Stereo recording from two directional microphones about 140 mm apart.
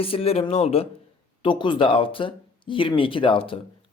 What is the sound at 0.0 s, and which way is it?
Speech, 45° left (ahead or behind).